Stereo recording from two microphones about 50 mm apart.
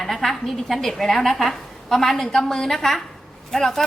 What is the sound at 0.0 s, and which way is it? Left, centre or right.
A woman's voice, centre.